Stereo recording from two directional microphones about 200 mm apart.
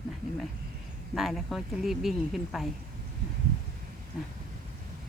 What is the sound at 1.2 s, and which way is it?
Speech, centre (ahead or behind).